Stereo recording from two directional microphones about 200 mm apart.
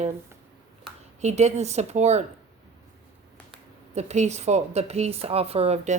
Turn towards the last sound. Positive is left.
turn(degrees=-30)  # may be behind; listen again after turning